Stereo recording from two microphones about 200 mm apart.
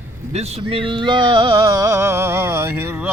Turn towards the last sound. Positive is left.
turn(degrees=-10)  # may be behind; listen again after turning